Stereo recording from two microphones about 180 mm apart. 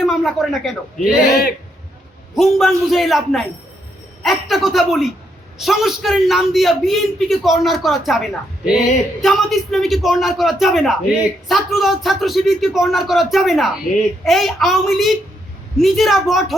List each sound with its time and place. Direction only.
0.0 s a man's voice: centre (ahead or behind)
1.3 s a man's voice: 60° left (ahead or behind)
2.3 s a man's voice: centre (ahead or behind)